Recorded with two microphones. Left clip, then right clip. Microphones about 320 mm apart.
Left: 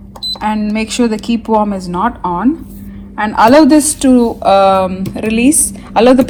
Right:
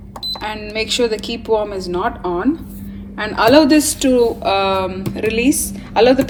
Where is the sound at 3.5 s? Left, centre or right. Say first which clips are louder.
Left 2 dB; left.